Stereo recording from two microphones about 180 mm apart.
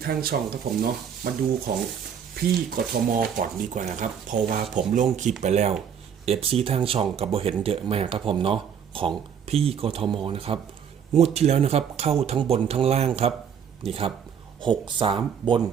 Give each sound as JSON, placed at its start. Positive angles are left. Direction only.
{"t": 0.0, "sound": "speech", "side_deg": -55}